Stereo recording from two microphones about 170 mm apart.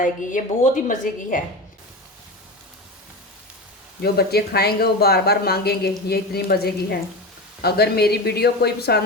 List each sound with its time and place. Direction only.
0.0 s a woman's voice: 50° left (ahead or behind)
4.0 s speech: 70° left (ahead or behind)